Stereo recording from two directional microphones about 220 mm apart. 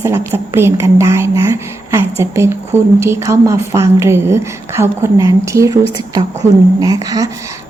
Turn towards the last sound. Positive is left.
turn(degrees=-15)  # may be behind; listen again after turning